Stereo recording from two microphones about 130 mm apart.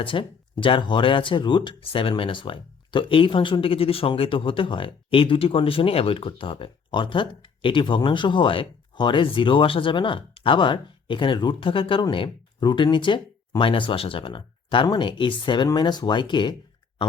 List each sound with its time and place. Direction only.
0.0 s speech: 40° left (ahead or behind)